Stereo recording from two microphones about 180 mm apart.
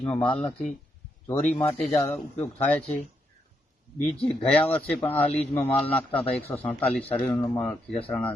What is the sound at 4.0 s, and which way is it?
Speech, 5° left (ahead or behind).